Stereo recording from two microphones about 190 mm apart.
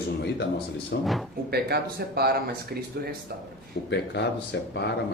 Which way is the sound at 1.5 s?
55° right (ahead or behind).